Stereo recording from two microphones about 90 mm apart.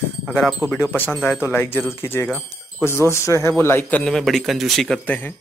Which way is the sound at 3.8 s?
15° left (ahead or behind).